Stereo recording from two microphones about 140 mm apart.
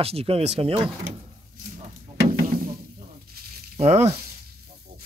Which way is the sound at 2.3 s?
85° right.